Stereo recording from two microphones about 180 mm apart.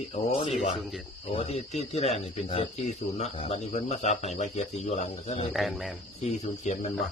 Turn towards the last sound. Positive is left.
turn(degrees=40)  # may be behind; listen again after turning